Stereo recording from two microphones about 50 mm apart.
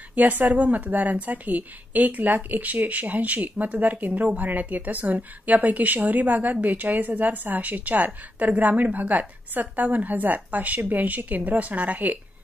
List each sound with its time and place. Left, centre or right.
0.1 s a woman's voice: right